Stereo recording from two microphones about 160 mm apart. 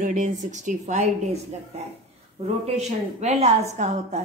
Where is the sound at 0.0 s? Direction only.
50° right (ahead or behind).